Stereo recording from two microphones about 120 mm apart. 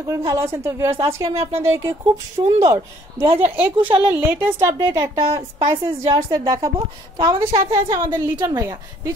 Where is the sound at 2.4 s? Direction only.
50° right (ahead or behind).